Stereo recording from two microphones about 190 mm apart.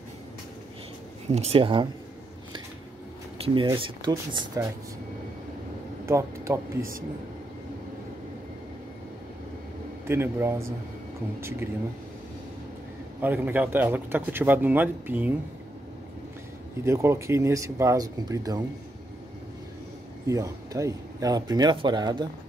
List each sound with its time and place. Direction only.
1.3 s speech: 30° right (ahead or behind)
3.4 s speech: 30° right (ahead or behind)
6.0 s speech: 15° right (ahead or behind)
10.0 s speech: 15° right (ahead or behind)
13.2 s speech: 10° right (ahead or behind)
16.8 s speech: 15° right (ahead or behind)
20.2 s speech: 15° right (ahead or behind)